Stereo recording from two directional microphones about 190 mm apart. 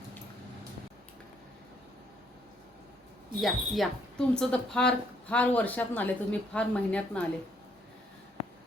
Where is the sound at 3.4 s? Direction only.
Centre (ahead or behind).